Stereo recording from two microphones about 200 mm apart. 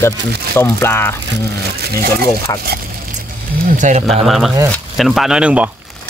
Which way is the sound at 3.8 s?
40° right (ahead or behind).